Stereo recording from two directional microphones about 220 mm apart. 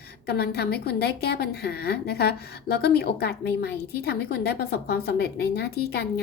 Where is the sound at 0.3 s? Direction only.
45° left (ahead or behind).